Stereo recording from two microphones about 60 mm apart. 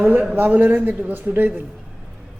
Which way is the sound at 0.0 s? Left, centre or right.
Right.